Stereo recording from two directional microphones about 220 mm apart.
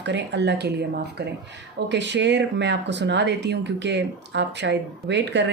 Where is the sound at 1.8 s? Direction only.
55° right (ahead or behind).